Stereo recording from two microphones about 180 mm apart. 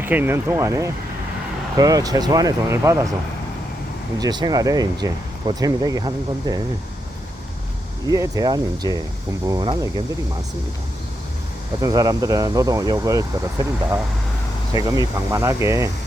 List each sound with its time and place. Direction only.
0.0 s speech: 10° right (ahead or behind)
4.2 s speech: 25° right (ahead or behind)
8.1 s speech: 20° right (ahead or behind)
11.8 s speech: 20° right (ahead or behind)